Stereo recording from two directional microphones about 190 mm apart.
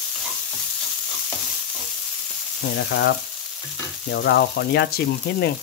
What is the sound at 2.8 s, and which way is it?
Speech, 65° left (ahead or behind).